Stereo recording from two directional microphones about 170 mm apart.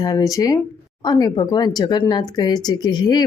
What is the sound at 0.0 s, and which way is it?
Speech, 20° left (ahead or behind).